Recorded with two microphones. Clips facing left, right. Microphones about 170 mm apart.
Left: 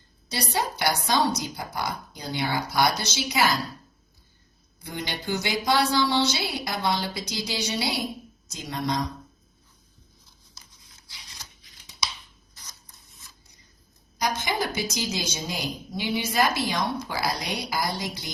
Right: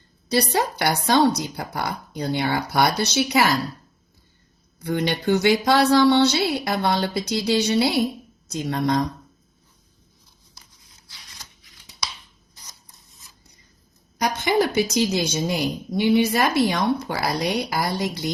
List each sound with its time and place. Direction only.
0.3 s speech: 65° right (ahead or behind)
4.8 s speech: 65° right (ahead or behind)
14.2 s speech: 65° right (ahead or behind)